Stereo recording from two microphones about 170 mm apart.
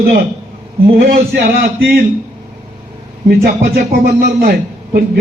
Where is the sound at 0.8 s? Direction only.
65° right (ahead or behind).